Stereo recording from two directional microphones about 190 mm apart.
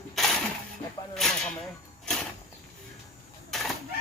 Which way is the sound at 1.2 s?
Centre (ahead or behind).